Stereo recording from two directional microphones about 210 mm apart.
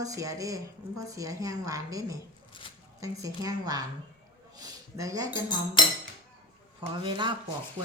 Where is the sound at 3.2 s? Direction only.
15° right (ahead or behind).